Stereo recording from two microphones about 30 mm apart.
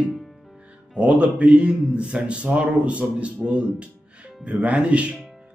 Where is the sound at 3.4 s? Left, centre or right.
Right.